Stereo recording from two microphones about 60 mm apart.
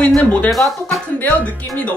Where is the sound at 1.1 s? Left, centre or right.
Left.